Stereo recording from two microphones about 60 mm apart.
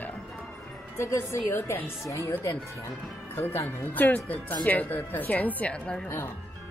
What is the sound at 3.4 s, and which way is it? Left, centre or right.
Speech, left.